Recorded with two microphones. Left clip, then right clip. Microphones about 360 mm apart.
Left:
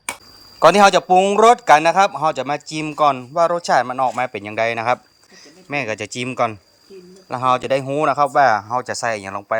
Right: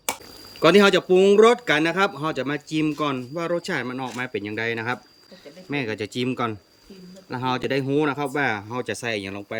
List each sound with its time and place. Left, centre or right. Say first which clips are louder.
0.6 s speech: left 5 dB; centre
8.6 s speech: left 7 dB; centre